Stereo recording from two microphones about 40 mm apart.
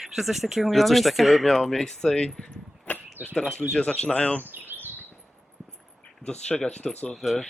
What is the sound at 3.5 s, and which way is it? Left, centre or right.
Speech, left.